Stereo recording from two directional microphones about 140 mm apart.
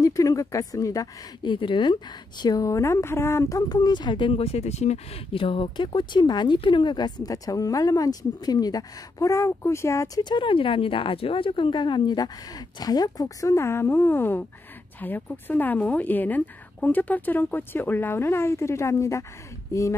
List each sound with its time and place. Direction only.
0.0 s speech: 25° left (ahead or behind)
1.5 s a woman's voice: 35° left (ahead or behind)